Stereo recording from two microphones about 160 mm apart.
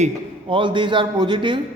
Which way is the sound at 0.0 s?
35° right (ahead or behind).